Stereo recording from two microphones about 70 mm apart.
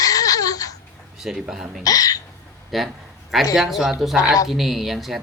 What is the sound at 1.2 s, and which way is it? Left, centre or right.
Speech, centre.